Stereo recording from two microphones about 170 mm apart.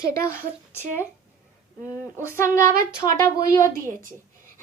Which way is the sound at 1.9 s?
15° left (ahead or behind).